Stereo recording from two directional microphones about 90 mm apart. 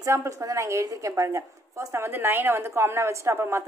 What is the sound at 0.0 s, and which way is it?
A woman's voice, 35° right (ahead or behind).